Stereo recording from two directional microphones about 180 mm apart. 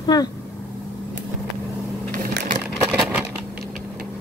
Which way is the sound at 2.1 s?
50° right (ahead or behind).